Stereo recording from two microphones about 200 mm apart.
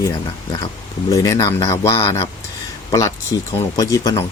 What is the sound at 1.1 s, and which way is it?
Speech, 15° left (ahead or behind).